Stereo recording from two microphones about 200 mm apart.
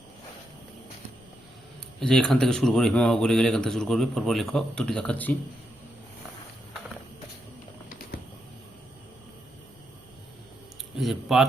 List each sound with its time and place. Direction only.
2.0 s speech: 5° left (ahead or behind)
7.9 s pigeon: 45° left (ahead or behind)
10.9 s speech: centre (ahead or behind)